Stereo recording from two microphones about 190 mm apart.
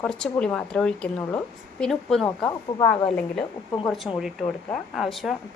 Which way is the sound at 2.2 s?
20° left (ahead or behind).